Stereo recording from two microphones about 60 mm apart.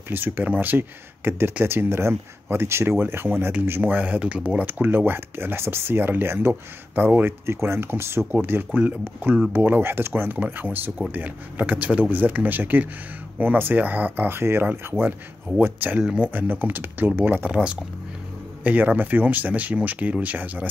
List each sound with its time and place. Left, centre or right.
0.1 s speech: right
3.9 s speech: right
4.8 s speech: right
14.4 s speech: right
15.5 s speech: right
17.5 s speech: centre